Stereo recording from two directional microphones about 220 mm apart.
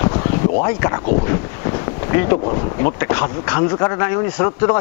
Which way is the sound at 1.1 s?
15° left (ahead or behind).